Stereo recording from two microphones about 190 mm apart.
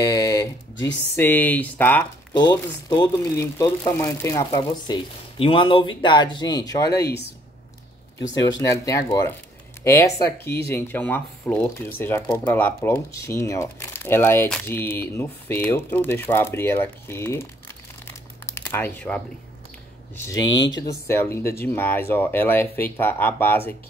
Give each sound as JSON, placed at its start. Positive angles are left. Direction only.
{"t": 0.0, "sound": "a sound", "side_deg": 15}
{"t": 1.1, "sound": "speech", "side_deg": 10}
{"t": 2.3, "sound": "speech", "side_deg": 20}
{"t": 8.4, "sound": "speech", "side_deg": 20}
{"t": 20.2, "sound": "speech", "side_deg": 20}